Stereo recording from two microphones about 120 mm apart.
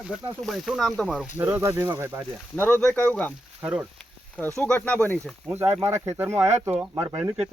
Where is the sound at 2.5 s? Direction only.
15° left (ahead or behind).